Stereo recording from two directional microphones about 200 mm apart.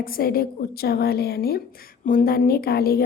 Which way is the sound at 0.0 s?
45° left (ahead or behind).